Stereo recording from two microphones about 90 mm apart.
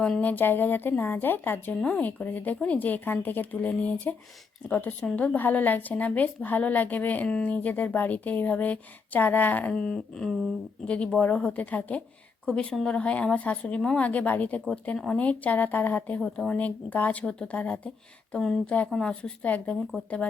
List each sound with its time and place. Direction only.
0.0 s speech: 15° left (ahead or behind)
16.2 s speech: 5° left (ahead or behind)
16.6 s speech: 15° left (ahead or behind)